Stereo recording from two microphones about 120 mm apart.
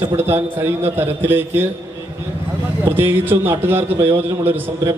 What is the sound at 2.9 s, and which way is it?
A man's voice, 15° right (ahead or behind).